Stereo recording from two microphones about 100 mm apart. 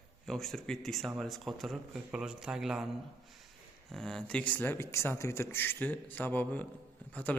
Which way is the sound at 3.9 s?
5° left (ahead or behind).